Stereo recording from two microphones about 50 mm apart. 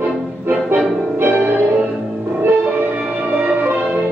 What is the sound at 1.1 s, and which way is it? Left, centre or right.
Music, right.